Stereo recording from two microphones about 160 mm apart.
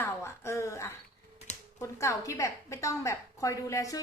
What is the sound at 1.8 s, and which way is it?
A woman's voice, 20° left (ahead or behind).